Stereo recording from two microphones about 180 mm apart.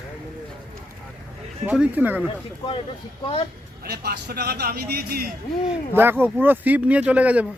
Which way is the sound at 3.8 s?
60° right (ahead or behind).